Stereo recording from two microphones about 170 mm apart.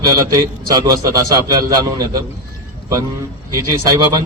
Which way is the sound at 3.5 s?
20° right (ahead or behind).